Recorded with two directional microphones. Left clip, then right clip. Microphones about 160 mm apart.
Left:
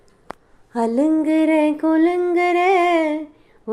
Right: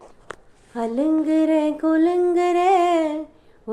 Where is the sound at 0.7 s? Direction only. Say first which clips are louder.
Left 4 dB; 35° left (ahead or behind).